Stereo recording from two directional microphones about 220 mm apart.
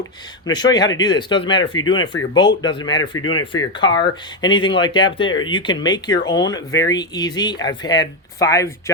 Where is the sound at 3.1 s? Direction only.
70° left (ahead or behind).